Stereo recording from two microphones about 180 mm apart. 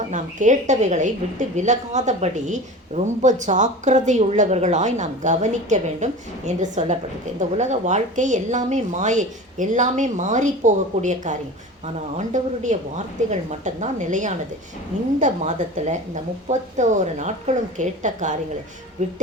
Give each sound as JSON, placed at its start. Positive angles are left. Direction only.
{"t": 0.1, "sound": "a woman's voice", "side_deg": -45}